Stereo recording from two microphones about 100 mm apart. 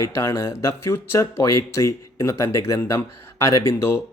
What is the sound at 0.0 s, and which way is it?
Speech, 30° left (ahead or behind).